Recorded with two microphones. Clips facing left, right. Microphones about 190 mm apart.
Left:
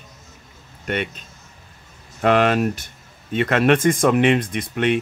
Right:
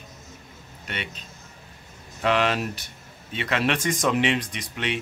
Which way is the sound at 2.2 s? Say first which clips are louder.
Left 6 dB; 50° left (ahead or behind).